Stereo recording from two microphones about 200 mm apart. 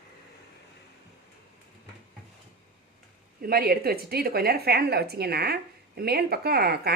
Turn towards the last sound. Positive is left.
turn(degrees=-50)  # may be behind; listen again after turning